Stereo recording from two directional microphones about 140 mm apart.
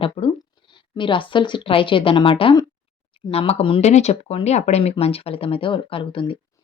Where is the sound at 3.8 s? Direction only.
55° left (ahead or behind); by 6.3 s 35° left (ahead or behind).